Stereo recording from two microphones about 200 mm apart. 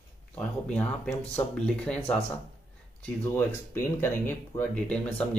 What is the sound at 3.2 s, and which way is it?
Speech, 10° left (ahead or behind).